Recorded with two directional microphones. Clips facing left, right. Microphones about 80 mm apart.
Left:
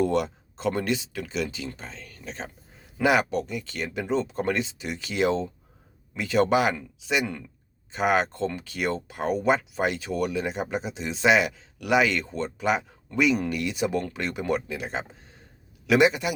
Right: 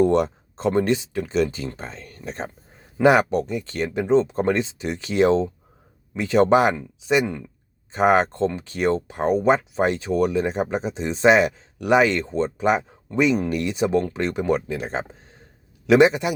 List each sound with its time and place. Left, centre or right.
0.0 s speech: right